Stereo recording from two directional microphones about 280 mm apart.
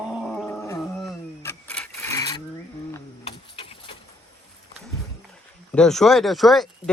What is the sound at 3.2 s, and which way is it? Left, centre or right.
Sewing machine, centre.